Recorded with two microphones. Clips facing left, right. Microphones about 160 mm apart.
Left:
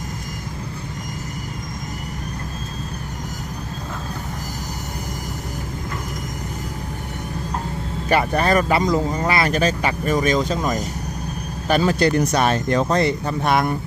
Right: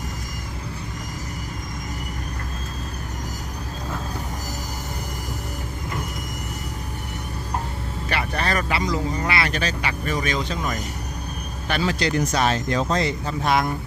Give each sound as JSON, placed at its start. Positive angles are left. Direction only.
{"t": 8.1, "sound": "speech", "side_deg": 45}